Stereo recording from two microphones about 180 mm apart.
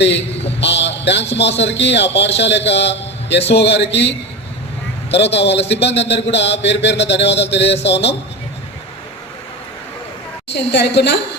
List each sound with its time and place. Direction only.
0.6 s a man's voice: 75° left (ahead or behind)
5.1 s a man's voice: 75° left (ahead or behind)
10.5 s a man's voice: 70° left (ahead or behind)